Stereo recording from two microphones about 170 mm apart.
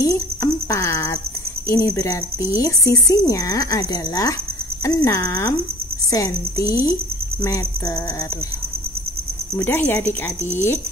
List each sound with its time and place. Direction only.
0.0 s cricket: 20° left (ahead or behind)
1.7 s speech: 20° left (ahead or behind)
9.6 s speech: 10° left (ahead or behind)